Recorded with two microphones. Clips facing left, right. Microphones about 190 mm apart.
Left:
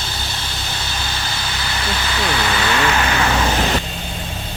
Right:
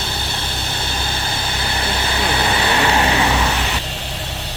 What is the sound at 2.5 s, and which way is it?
Vehicle, 35° right (ahead or behind).